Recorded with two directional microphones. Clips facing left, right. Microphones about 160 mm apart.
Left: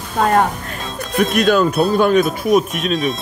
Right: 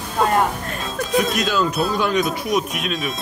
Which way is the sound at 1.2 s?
55° left (ahead or behind).